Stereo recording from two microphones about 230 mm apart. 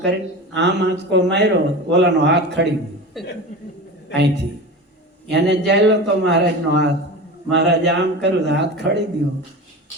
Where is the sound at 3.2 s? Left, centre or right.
Centre.